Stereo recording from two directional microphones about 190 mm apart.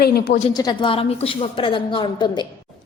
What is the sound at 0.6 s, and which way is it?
A woman's voice, 25° left (ahead or behind).